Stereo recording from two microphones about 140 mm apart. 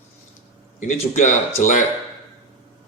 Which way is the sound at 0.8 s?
60° left (ahead or behind).